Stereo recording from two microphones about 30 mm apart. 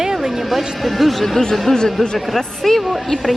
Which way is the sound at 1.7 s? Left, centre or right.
Centre.